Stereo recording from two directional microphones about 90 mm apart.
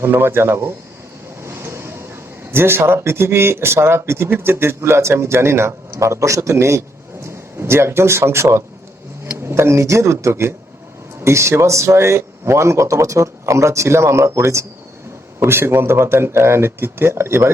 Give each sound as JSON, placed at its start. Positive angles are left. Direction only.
{"t": 0.0, "sound": "speech", "side_deg": -25}
{"t": 1.5, "sound": "vehicle", "side_deg": -30}
{"t": 2.5, "sound": "speech", "side_deg": -25}